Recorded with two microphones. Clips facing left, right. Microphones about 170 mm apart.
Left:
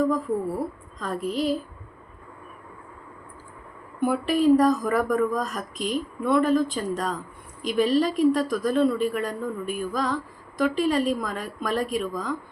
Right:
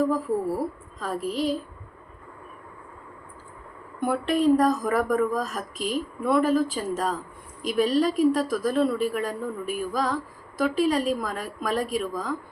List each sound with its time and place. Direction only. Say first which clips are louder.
0.9 s speech: left 1 dB; centre (ahead or behind)
4.0 s speech: left 1 dB; 5° left (ahead or behind)